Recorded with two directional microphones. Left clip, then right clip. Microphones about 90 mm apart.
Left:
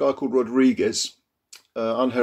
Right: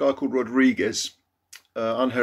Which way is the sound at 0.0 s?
25° left (ahead or behind).